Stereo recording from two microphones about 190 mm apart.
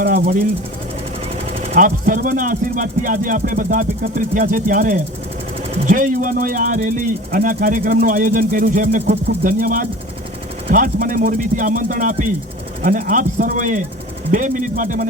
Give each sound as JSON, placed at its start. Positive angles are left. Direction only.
{"t": 0.0, "sound": "speech", "side_deg": -45}
{"t": 1.7, "sound": "speech", "side_deg": -45}